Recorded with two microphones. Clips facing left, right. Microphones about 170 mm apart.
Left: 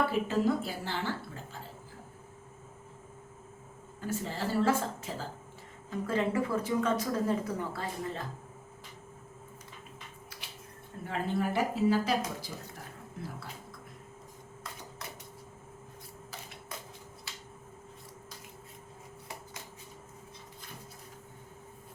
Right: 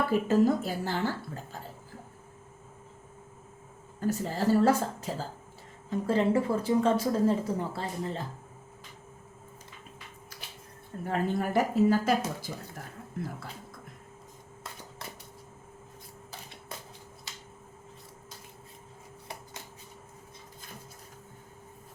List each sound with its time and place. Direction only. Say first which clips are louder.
0.1 s speech: right 5 dB; 45° right (ahead or behind)
4.0 s speech: right 6 dB; 40° right (ahead or behind)
11.0 s speech: right 3 dB; 45° right (ahead or behind)